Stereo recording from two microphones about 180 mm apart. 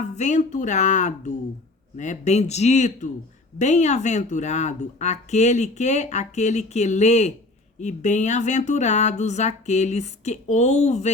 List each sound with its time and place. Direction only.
0.0 s speech: 40° left (ahead or behind)